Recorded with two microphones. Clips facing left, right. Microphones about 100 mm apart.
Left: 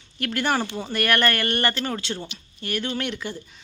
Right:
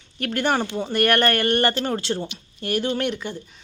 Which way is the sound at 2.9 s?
5° right (ahead or behind).